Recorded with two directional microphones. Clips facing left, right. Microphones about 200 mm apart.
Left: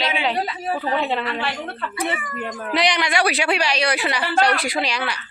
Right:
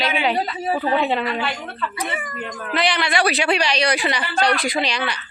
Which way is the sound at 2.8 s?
15° left (ahead or behind).